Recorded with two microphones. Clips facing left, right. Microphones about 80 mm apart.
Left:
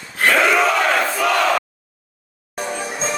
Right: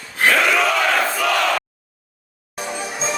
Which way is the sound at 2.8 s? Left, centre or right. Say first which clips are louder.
Right 2 dB; left.